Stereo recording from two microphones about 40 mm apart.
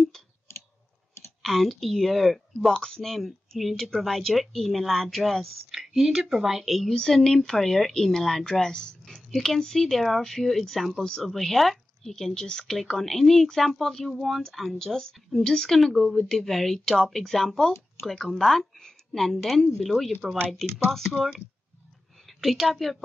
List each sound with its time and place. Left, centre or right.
1.4 s speech: centre
2.7 s speech: centre
5.7 s speech: centre
6.9 s speech: centre
9.0 s speech: centre
12.4 s speech: centre
21.1 s speech: centre
22.4 s a woman's voice: centre